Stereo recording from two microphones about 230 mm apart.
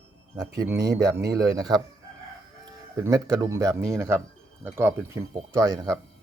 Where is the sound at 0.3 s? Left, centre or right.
Centre.